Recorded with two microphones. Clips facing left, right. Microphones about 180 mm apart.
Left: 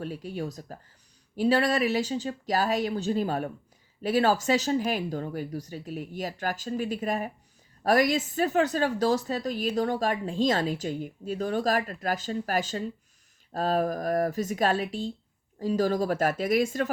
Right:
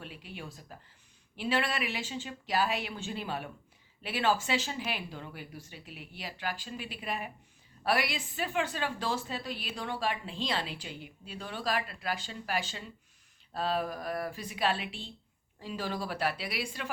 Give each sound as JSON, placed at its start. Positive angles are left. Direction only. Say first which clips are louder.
{"t": 0.0, "sound": "a woman's voice", "louder": "left 11 dB", "side_deg": 40}